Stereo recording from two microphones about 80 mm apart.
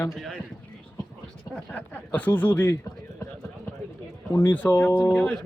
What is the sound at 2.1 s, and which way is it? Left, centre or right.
Speech, centre.